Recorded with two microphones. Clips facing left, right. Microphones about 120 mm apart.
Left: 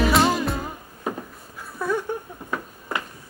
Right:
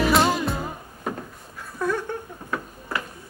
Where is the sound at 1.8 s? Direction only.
10° left (ahead or behind).